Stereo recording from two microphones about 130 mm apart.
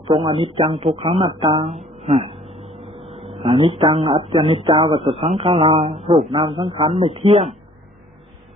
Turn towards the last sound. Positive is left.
turn(degrees=-50)  # may be behind; listen again after turning